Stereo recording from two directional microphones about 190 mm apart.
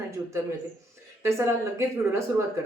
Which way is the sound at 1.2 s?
15° right (ahead or behind).